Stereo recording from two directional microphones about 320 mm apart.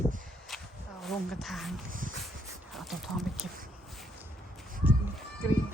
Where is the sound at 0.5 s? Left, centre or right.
Centre.